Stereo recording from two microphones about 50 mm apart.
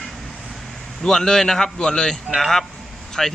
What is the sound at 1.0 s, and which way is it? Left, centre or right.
Speech, centre.